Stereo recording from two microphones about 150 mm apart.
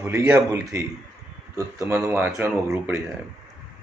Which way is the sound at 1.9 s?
15° right (ahead or behind).